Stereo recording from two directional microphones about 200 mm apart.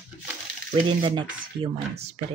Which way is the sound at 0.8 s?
25° right (ahead or behind).